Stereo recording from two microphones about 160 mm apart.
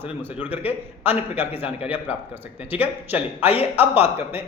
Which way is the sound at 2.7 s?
10° right (ahead or behind).